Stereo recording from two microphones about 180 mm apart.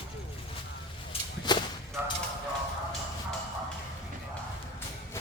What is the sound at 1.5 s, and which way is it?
Whip, 25° left (ahead or behind).